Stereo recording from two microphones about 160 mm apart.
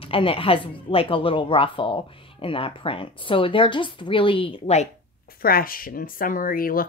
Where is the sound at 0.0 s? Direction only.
35° left (ahead or behind).